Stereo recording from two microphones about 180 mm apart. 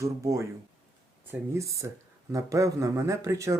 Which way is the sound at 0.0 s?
15° right (ahead or behind).